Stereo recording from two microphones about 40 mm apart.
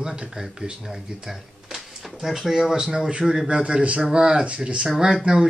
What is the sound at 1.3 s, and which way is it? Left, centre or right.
Speech, centre.